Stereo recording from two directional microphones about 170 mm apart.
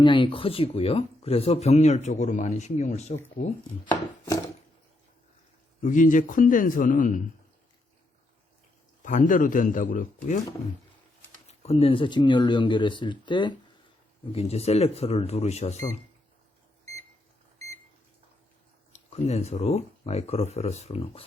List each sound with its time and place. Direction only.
0.0 s speech: 30° left (ahead or behind)
3.4 s a man's voice: 50° left (ahead or behind)
5.8 s a man's voice: 50° left (ahead or behind)
9.0 s a man's voice: 50° left (ahead or behind)
11.4 s speech: 35° left (ahead or behind)
14.3 s speech: 40° left (ahead or behind)
19.1 s speech: 40° left (ahead or behind)